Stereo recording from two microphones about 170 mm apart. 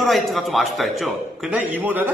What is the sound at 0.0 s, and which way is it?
A man's voice, centre (ahead or behind).